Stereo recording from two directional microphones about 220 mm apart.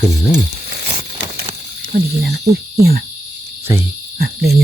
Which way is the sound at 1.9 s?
45° right (ahead or behind).